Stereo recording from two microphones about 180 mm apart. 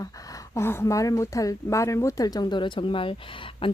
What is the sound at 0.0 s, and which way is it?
A woman's voice, 20° left (ahead or behind).